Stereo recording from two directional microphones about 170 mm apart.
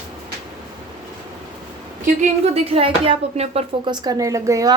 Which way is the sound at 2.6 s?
35° right (ahead or behind).